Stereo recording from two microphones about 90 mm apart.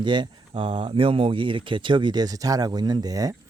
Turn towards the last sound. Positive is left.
turn(degrees=-40)  # may be behind; listen again after turning